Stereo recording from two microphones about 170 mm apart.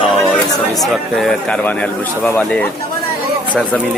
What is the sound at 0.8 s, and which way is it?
A man's voice, centre (ahead or behind).